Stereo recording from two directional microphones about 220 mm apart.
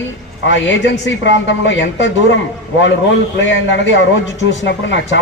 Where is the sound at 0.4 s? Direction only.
55° left (ahead or behind).